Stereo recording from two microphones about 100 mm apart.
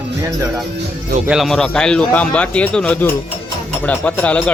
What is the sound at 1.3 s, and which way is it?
Speech, centre (ahead or behind).